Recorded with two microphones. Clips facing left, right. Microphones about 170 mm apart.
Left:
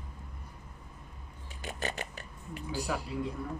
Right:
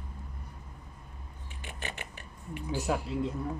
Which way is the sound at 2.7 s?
20° right (ahead or behind).